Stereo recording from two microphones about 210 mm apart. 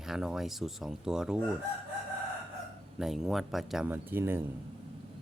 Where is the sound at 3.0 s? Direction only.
Centre (ahead or behind).